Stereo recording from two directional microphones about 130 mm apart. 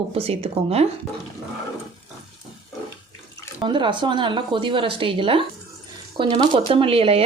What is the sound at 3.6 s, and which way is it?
Speech, 35° right (ahead or behind).